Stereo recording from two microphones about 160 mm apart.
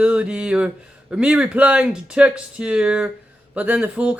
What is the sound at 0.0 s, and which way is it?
Speech, 5° right (ahead or behind).